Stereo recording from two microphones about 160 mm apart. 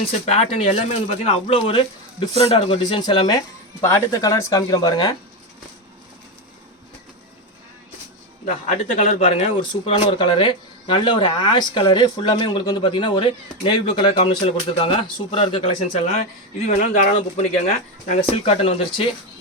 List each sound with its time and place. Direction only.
0.0 s speech: 40° left (ahead or behind); by 5.1 s 25° left (ahead or behind)
8.4 s speech: 45° left (ahead or behind)
16.6 s speech: 50° left (ahead or behind)